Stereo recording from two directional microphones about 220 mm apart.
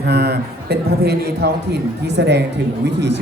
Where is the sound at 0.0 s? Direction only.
45° right (ahead or behind).